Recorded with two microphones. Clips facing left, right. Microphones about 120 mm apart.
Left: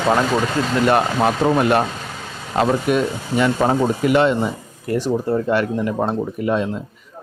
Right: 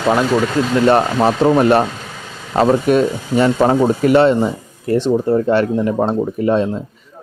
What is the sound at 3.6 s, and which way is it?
Speech, 25° right (ahead or behind).